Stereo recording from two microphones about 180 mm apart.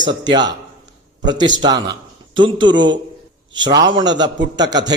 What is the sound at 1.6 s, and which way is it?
A man's voice, 25° right (ahead or behind).